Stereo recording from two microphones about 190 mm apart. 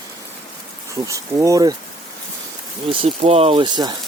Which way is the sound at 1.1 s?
15° right (ahead or behind).